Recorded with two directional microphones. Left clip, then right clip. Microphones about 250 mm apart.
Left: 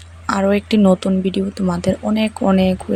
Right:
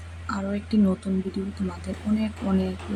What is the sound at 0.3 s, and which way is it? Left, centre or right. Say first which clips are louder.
Speech: left 14 dB; left.